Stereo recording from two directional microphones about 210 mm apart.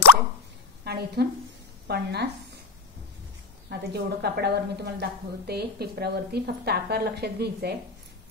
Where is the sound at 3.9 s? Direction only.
50° right (ahead or behind).